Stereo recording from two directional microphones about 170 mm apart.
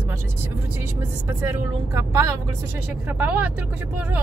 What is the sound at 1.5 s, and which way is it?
Speech, 20° right (ahead or behind).